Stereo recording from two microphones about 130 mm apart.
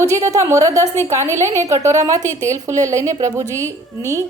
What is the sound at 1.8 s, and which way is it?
A woman's voice, 25° right (ahead or behind).